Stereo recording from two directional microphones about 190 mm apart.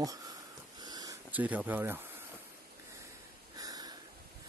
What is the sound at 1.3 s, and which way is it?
Speech, 10° right (ahead or behind).